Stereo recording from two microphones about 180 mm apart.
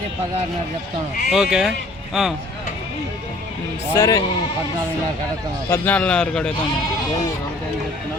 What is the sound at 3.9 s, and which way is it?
Speech, 20° left (ahead or behind).